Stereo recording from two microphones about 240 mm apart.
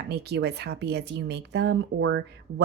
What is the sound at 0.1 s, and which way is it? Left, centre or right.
Speech, right.